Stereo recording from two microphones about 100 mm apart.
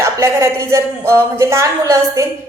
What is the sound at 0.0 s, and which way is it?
A woman's voice, 30° right (ahead or behind).